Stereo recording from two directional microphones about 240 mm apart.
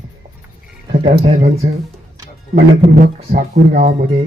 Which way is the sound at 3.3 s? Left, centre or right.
Right.